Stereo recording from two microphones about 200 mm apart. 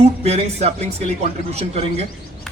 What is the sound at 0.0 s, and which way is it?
A man's voice, 30° right (ahead or behind).